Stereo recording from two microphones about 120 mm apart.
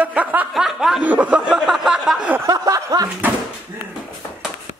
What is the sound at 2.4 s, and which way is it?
Chuckle, 30° right (ahead or behind).